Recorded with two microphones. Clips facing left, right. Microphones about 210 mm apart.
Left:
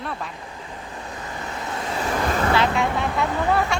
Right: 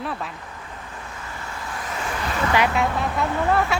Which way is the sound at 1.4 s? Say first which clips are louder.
Left 4 dB; 25° left (ahead or behind).